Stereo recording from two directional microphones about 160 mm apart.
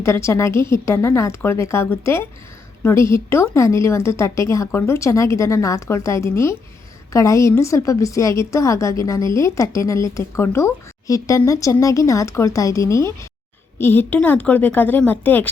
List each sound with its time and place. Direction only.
0.0 s a woman's voice: 15° left (ahead or behind)